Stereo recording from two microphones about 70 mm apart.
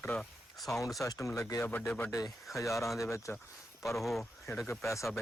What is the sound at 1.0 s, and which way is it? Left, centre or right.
Speech, left.